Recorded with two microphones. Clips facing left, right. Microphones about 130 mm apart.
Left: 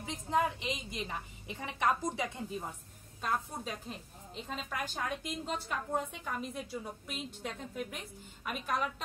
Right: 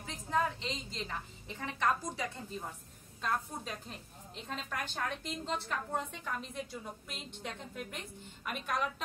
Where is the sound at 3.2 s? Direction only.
5° left (ahead or behind).